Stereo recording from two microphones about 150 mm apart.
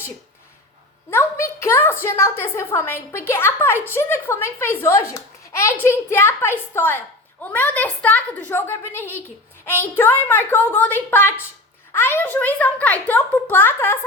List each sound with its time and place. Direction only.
1.1 s a child's voice: 20° left (ahead or behind)